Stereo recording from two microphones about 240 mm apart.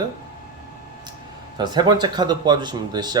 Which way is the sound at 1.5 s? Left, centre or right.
Centre.